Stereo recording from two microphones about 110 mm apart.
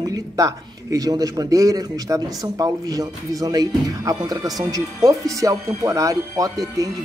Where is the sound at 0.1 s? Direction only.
30° right (ahead or behind).